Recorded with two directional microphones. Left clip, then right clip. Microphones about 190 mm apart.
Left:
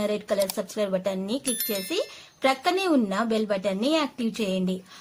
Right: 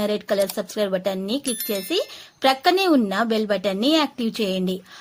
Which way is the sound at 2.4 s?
30° right (ahead or behind).